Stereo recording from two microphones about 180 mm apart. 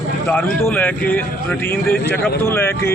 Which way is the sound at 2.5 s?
15° left (ahead or behind).